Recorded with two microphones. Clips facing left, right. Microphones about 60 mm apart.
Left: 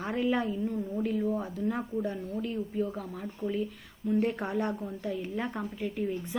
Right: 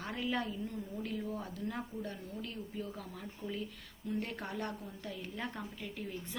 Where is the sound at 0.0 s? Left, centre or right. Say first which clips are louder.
Left 8 dB; centre.